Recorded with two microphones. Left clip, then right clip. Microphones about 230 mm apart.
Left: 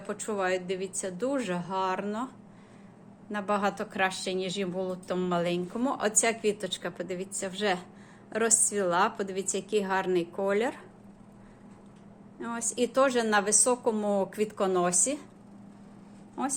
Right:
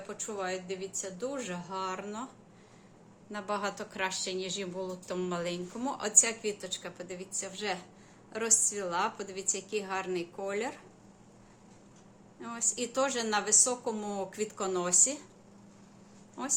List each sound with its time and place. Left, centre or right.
0.1 s a woman's voice: left
3.3 s a woman's voice: centre
12.4 s a woman's voice: centre
16.4 s a woman's voice: centre